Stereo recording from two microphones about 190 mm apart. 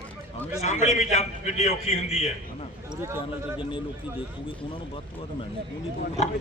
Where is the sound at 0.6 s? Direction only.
35° left (ahead or behind).